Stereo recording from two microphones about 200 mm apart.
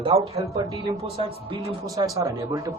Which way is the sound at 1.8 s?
15° right (ahead or behind).